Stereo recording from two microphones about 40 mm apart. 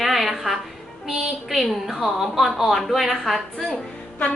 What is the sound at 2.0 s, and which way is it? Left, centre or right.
Speech, centre.